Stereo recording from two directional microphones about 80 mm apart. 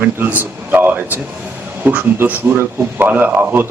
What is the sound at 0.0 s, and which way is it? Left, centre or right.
A man's voice, right.